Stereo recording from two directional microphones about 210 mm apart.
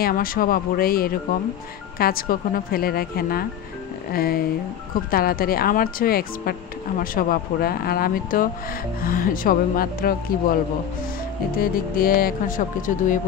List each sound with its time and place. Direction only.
0.0 s speech: 45° left (ahead or behind)